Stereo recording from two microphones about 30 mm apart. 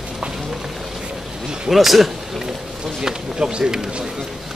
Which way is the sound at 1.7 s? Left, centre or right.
Centre.